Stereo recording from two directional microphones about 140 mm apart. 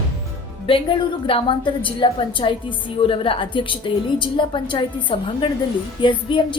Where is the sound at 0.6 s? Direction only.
35° left (ahead or behind).